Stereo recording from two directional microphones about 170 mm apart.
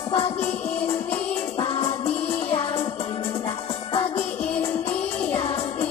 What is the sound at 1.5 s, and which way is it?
Music, 35° left (ahead or behind).